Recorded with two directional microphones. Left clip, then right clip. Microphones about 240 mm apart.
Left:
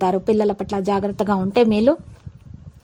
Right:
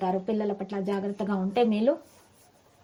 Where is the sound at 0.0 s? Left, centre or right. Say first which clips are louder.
Left 10 dB; left.